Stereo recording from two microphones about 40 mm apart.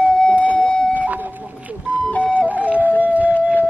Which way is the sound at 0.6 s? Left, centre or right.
Left.